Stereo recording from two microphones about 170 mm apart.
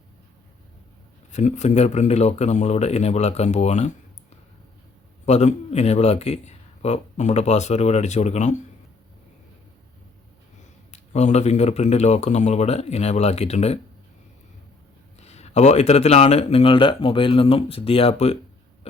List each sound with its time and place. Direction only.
1.3 s speech: 45° left (ahead or behind)
5.2 s speech: 40° left (ahead or behind)
10.9 s speech: 40° left (ahead or behind)
15.2 s speech: 40° left (ahead or behind)